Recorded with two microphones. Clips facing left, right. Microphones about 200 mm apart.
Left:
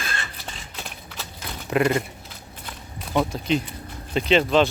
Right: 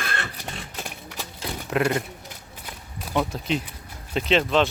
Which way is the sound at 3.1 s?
Centre (ahead or behind).